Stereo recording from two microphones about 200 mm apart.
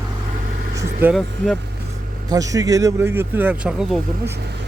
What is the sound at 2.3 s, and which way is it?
Speech, 15° right (ahead or behind).